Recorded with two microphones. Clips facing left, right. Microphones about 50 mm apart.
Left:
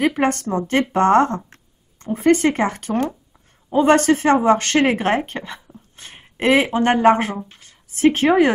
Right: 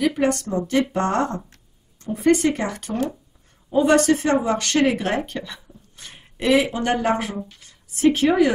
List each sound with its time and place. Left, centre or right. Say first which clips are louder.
0.0 s a woman's voice: left 2 dB; left